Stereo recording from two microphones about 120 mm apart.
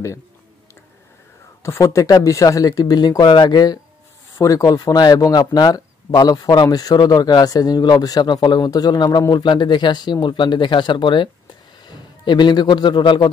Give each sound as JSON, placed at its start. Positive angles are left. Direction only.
{"t": 1.6, "sound": "speech", "side_deg": 25}
{"t": 12.3, "sound": "speech", "side_deg": 40}